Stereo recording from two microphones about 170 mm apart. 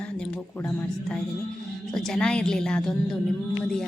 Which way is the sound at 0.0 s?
5° left (ahead or behind).